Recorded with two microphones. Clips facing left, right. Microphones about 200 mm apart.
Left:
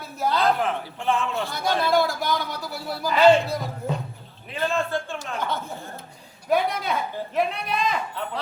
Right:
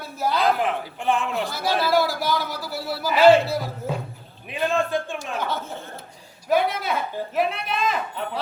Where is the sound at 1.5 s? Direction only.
5° right (ahead or behind).